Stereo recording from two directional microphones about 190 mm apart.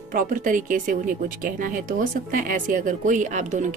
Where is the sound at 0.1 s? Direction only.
45° right (ahead or behind).